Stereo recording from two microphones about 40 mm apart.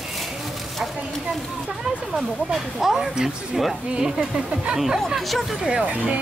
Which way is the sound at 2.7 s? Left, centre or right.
Centre.